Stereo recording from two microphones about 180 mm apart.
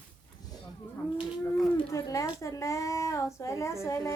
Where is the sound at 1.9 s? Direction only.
15° left (ahead or behind).